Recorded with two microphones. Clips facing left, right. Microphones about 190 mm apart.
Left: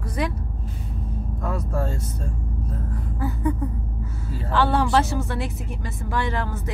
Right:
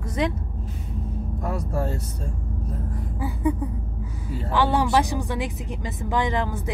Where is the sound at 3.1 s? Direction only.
10° right (ahead or behind).